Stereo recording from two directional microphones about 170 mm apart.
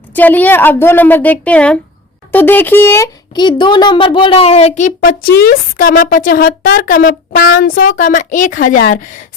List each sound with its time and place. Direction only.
0.1 s a woman's voice: 10° left (ahead or behind)
3.3 s a woman's voice: 25° left (ahead or behind); by 8.8 s 50° left (ahead or behind)